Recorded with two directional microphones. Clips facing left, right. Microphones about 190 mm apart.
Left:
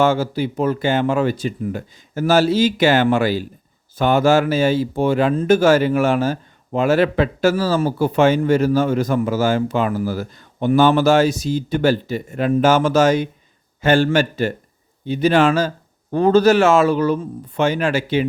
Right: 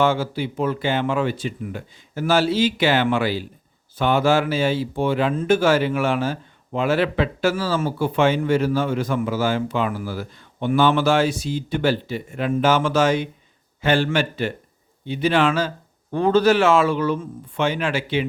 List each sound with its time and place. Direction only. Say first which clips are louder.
0.0 s speech: left 3 dB; 45° left (ahead or behind)